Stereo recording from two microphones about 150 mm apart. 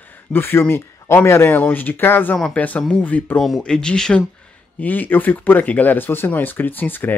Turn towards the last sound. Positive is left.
turn(degrees=10)  # may be behind; listen again after turning